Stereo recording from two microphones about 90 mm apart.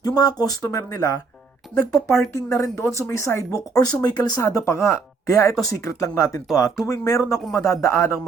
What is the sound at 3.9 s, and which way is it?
Speech, 50° left (ahead or behind).